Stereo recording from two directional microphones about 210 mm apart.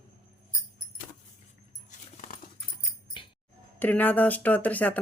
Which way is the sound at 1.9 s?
40° left (ahead or behind).